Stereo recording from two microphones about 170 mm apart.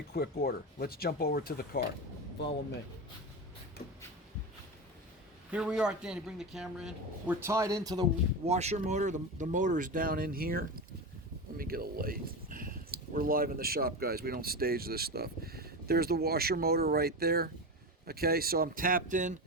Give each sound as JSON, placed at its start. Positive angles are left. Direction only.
{"t": 0.1, "sound": "speech", "side_deg": 60}
{"t": 3.8, "sound": "speech", "side_deg": 60}
{"t": 5.5, "sound": "a man's voice", "side_deg": -5}
{"t": 7.4, "sound": "speech", "side_deg": -20}
{"t": 8.4, "sound": "speech", "side_deg": -40}